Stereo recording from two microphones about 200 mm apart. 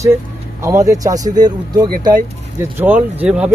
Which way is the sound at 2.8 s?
10° right (ahead or behind).